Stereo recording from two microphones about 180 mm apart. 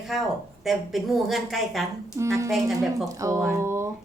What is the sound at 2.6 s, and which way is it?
Speech, centre (ahead or behind).